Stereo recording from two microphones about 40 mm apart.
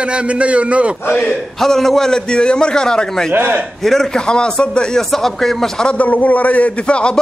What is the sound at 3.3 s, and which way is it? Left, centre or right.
Speech, right.